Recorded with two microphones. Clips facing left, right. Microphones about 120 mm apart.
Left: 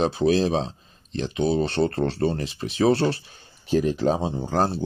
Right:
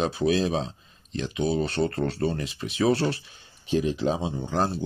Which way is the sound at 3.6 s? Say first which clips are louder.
Left 3 dB; 45° left (ahead or behind).